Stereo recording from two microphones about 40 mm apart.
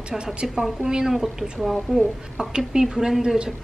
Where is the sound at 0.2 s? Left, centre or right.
Right.